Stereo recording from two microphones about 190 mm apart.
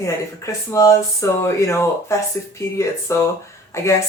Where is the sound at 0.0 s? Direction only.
15° left (ahead or behind).